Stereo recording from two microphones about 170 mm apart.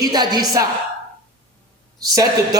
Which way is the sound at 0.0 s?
20° right (ahead or behind).